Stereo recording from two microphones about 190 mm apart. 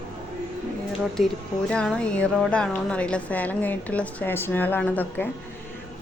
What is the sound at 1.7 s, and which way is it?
Speech, 5° left (ahead or behind).